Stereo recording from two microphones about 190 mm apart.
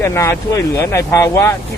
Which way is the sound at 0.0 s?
15° left (ahead or behind).